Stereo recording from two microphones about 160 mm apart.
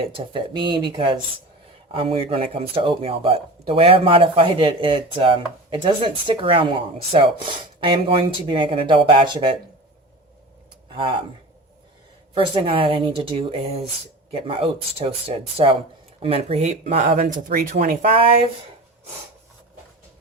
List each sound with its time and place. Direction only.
0.0 s speech: 35° right (ahead or behind)
10.9 s speech: 30° right (ahead or behind)
12.3 s speech: 35° right (ahead or behind); by 18.1 s 60° right (ahead or behind)